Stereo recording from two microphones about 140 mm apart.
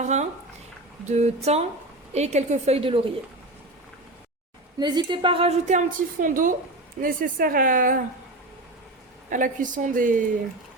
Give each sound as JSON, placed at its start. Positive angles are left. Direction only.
{"t": 0.0, "sound": "a woman's voice", "side_deg": -55}
{"t": 4.8, "sound": "a woman's voice", "side_deg": -30}
{"t": 5.6, "sound": "speech", "side_deg": -65}
{"t": 9.3, "sound": "speech", "side_deg": -70}